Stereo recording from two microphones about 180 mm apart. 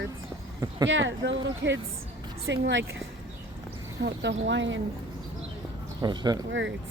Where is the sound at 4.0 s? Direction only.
70° right (ahead or behind); by 4.8 s 90° right.